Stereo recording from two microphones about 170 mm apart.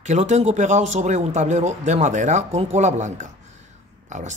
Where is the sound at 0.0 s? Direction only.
45° right (ahead or behind).